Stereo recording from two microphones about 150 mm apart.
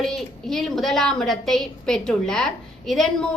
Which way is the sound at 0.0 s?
Centre (ahead or behind).